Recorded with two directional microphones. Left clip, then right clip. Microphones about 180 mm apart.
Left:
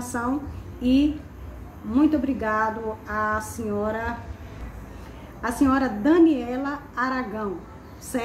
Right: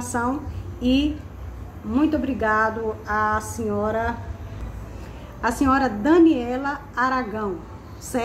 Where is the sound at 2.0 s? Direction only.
5° right (ahead or behind).